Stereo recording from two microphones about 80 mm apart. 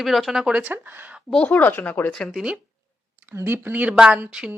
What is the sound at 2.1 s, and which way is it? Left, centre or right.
Speech, centre.